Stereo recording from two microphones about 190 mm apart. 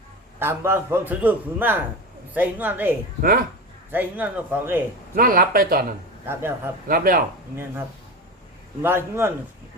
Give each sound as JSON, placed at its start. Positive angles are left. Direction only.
{"t": 0.3, "sound": "a man's voice", "side_deg": -10}
{"t": 3.2, "sound": "speech", "side_deg": -50}
{"t": 3.9, "sound": "a man's voice", "side_deg": -10}
{"t": 5.1, "sound": "speech", "side_deg": -50}
{"t": 6.3, "sound": "a man's voice", "side_deg": -10}
{"t": 6.8, "sound": "speech", "side_deg": -50}
{"t": 7.5, "sound": "a man's voice", "side_deg": -10}